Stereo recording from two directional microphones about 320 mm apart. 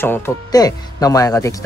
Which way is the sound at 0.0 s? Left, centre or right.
Centre.